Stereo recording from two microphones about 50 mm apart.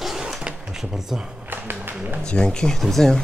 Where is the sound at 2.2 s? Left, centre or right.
Centre.